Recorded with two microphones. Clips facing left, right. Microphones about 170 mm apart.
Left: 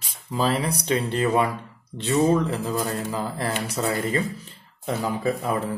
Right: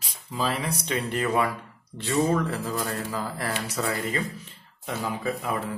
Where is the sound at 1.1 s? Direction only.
25° left (ahead or behind).